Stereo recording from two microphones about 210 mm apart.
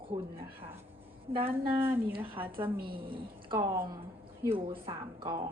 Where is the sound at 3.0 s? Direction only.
25° right (ahead or behind).